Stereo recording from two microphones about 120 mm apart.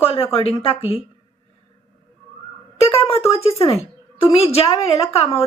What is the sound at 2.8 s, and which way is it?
A woman's voice, 55° left (ahead or behind).